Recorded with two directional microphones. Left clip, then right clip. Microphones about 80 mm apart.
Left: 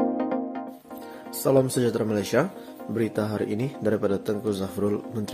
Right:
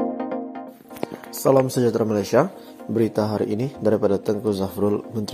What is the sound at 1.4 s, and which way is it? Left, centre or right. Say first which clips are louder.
Speech: right 4 dB; right.